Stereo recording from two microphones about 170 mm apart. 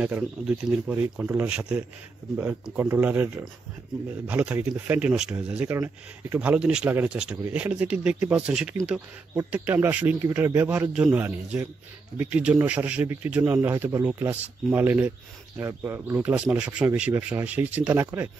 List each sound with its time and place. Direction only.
0.0 s a man's voice: 10° right (ahead or behind)